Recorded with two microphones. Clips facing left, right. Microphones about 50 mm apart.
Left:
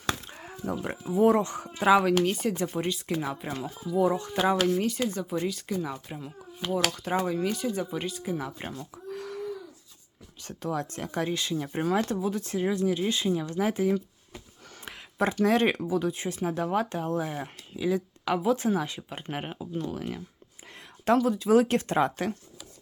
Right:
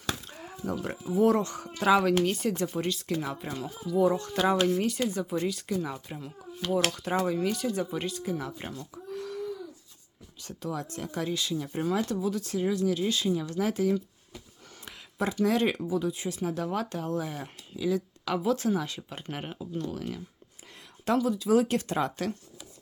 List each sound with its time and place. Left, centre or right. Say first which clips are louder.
0.0 s chop: left 3 dB; left
0.3 s speech: left 1 dB; centre
2.7 s speech: left 1 dB; centre
9.1 s a sound: right 1 dB; left
10.4 s speech: left 3 dB; left
14.8 s speech: left 3 dB; left